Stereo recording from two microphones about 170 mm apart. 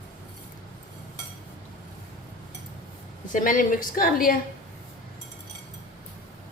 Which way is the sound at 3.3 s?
50° left (ahead or behind).